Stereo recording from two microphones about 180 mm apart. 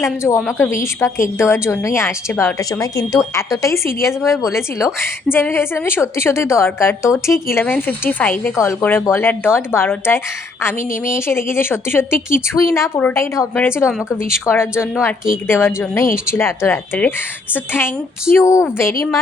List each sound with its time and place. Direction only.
0.2 s speech: 5° left (ahead or behind)